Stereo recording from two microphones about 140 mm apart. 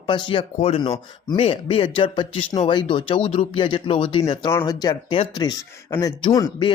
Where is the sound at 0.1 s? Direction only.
35° left (ahead or behind).